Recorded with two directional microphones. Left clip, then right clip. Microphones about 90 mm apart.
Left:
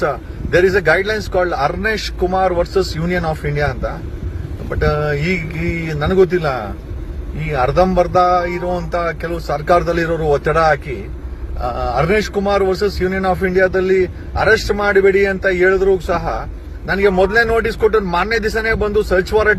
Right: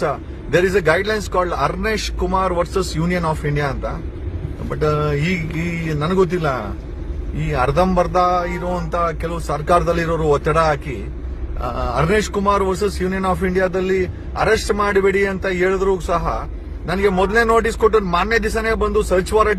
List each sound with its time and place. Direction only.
0.0 s speech: 35° right (ahead or behind)
4.8 s a man's voice: 35° right (ahead or behind)